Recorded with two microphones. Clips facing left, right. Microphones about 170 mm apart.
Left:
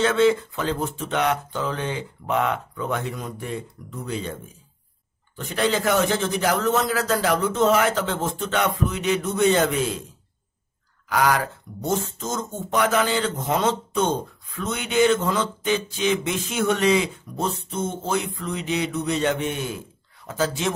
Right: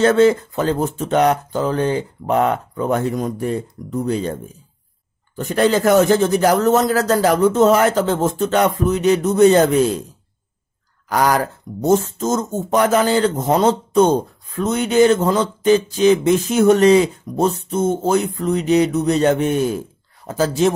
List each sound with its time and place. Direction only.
0.0 s speech: 40° right (ahead or behind)
11.1 s speech: 40° right (ahead or behind)